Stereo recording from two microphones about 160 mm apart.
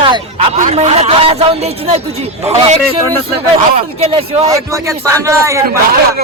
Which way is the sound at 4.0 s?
40° right (ahead or behind).